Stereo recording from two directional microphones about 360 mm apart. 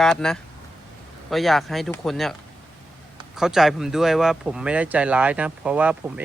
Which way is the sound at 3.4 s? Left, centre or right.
Centre.